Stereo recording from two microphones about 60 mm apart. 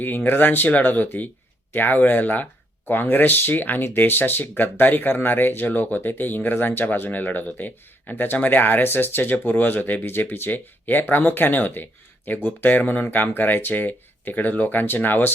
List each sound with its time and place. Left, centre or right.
0.0 s speech: left